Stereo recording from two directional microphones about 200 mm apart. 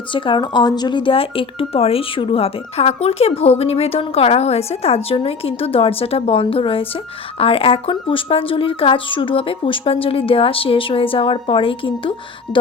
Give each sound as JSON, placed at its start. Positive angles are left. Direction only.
{"t": 0.1, "sound": "speech", "side_deg": 25}